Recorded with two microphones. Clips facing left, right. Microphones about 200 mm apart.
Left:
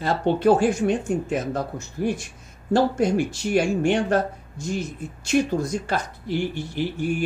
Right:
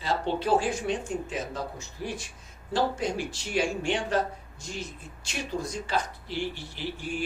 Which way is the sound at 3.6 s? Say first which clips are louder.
Left 7 dB; 55° left (ahead or behind).